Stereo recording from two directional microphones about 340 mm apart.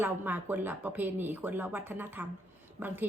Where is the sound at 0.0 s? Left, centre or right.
Centre.